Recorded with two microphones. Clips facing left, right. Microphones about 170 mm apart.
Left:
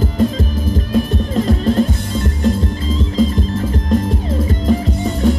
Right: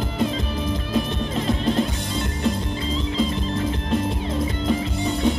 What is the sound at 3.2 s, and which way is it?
Music, 40° left (ahead or behind).